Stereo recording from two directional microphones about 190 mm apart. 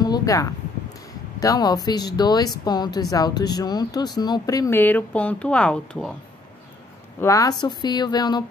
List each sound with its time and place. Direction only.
0.0 s a sound: 20° left (ahead or behind)
1.4 s speech: 20° left (ahead or behind)
7.2 s speech: 15° left (ahead or behind)